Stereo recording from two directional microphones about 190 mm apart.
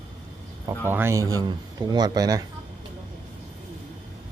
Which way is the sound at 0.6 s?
10° right (ahead or behind).